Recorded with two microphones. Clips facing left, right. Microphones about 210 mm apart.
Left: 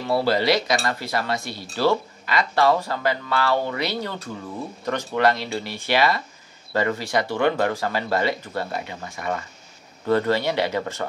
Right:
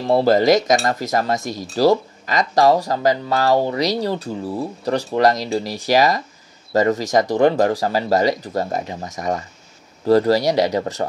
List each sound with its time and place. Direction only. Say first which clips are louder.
0.2 s speech: right 7 dB; 45° right (ahead or behind)